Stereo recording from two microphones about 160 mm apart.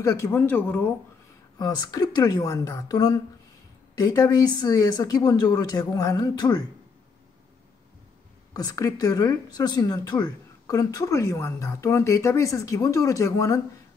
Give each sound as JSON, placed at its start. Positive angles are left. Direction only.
{"t": 0.0, "sound": "speech", "side_deg": 20}
{"t": 8.5, "sound": "speech", "side_deg": 20}